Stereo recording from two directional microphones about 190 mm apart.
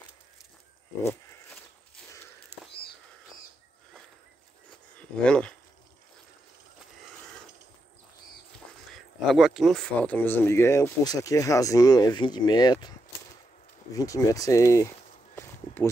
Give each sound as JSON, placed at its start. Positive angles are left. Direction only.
{"t": 4.9, "sound": "a sound", "side_deg": 5}
{"t": 8.9, "sound": "speech", "side_deg": 0}
{"t": 13.9, "sound": "speech", "side_deg": 20}
{"t": 15.3, "sound": "walk", "side_deg": 15}